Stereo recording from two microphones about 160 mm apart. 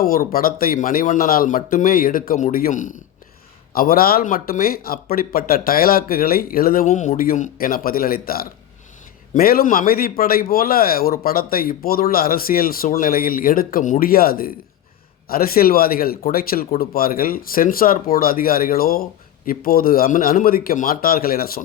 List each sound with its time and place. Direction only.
0.0 s speech: 65° left (ahead or behind)
3.7 s a man's voice: 65° left (ahead or behind)
6.8 s a man's voice: 50° left (ahead or behind); by 21.6 s 70° left (ahead or behind)